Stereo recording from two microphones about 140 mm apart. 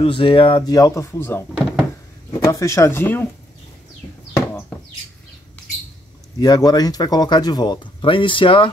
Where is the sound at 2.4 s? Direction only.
20° left (ahead or behind).